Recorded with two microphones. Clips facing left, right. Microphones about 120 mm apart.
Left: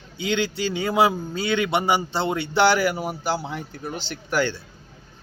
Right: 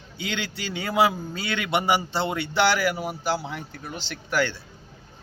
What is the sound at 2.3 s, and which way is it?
A man's voice, 30° left (ahead or behind).